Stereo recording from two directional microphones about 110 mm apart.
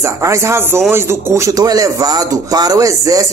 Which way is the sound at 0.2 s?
25° right (ahead or behind).